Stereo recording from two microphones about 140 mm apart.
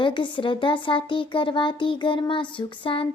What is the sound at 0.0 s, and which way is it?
Speech, 35° left (ahead or behind).